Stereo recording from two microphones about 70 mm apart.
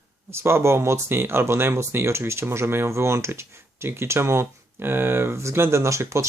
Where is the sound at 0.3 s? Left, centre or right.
Right.